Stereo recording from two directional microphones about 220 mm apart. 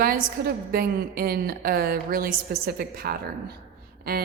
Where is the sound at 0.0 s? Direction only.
40° right (ahead or behind).